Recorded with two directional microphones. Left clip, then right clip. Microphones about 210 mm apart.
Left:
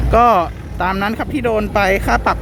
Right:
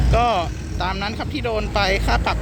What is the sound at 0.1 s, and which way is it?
Speech, 30° left (ahead or behind).